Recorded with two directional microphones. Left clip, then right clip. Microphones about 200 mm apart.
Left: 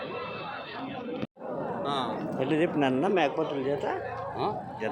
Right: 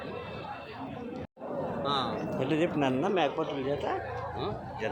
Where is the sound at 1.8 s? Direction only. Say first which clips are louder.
Right 1 dB; 30° left (ahead or behind).